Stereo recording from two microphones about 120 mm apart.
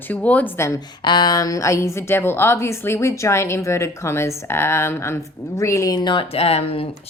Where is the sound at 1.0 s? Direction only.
40° left (ahead or behind).